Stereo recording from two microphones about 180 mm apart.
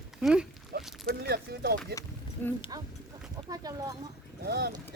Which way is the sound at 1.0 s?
60° right (ahead or behind).